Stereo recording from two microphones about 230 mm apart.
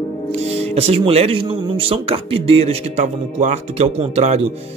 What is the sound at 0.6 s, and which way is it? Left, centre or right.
Speech, right.